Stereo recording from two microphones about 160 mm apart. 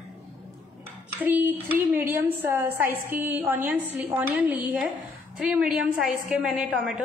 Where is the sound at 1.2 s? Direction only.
10° right (ahead or behind).